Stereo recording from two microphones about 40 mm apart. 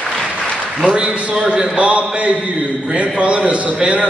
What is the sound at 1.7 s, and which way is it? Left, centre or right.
A man's voice, right.